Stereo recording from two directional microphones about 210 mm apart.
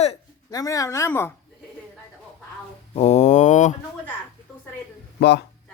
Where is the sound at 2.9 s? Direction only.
30° left (ahead or behind).